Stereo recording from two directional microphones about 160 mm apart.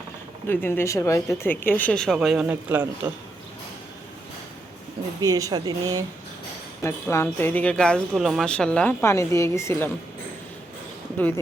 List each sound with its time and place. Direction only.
0.4 s speech: 15° left (ahead or behind)
2.1 s speech: 5° right (ahead or behind)
5.2 s speech: 20° right (ahead or behind)
6.8 s speech: 15° left (ahead or behind)